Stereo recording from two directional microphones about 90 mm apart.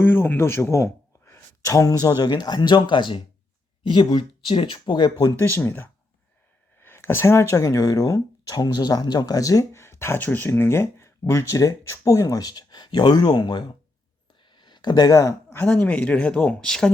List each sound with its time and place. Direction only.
0.0 s speech: 20° left (ahead or behind); by 5.1 s 60° left (ahead or behind)
5.4 s speech: 25° left (ahead or behind); by 13.7 s 55° left (ahead or behind)
14.4 s a sound: 55° left (ahead or behind); by 15.4 s 40° left (ahead or behind)
15.5 s speech: 15° left (ahead or behind)